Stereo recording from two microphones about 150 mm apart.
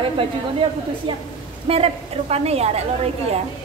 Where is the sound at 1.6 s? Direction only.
40° right (ahead or behind).